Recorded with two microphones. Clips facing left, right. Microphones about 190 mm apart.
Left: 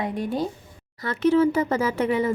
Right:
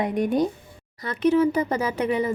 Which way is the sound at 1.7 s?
15° right (ahead or behind).